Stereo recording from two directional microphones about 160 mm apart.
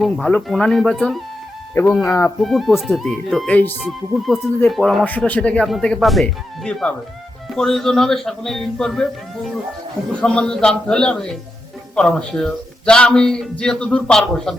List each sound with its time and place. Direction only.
0.0 s speech: 5° left (ahead or behind)
2.0 s speech: 15° left (ahead or behind)
2.4 s speech: centre (ahead or behind)